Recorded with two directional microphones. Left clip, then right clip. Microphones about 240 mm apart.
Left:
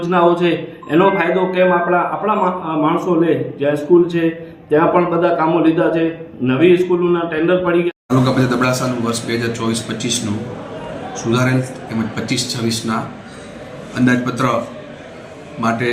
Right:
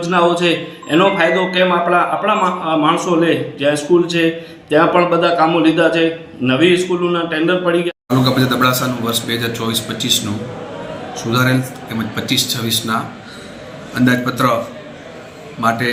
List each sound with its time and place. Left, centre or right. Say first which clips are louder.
0.0 s a man's voice: even; centre
1.3 s a man's voice: right 1 dB; right
1.5 s a man's voice: left 1 dB; centre